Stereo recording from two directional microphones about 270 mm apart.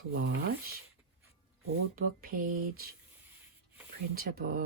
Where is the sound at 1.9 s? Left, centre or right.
Right.